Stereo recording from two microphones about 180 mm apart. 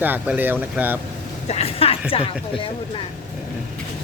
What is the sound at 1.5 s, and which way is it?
A woman's voice, 35° left (ahead or behind).